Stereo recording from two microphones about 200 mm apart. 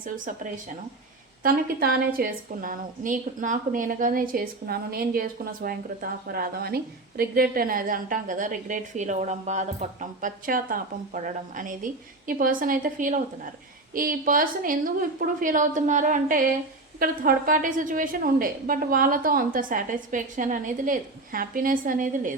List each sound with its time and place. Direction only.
1.4 s a woman's voice: 50° right (ahead or behind)